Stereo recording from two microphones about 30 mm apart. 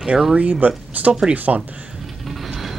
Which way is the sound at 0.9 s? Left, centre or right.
Right.